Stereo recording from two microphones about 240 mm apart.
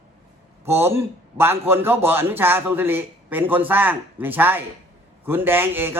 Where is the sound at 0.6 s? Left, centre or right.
Centre.